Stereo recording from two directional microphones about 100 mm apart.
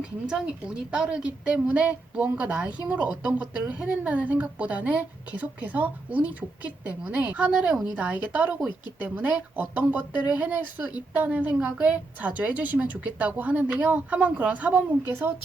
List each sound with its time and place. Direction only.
0.9 s a woman's voice: 10° right (ahead or behind)